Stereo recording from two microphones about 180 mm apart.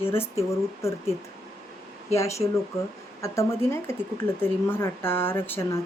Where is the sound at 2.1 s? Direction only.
15° left (ahead or behind).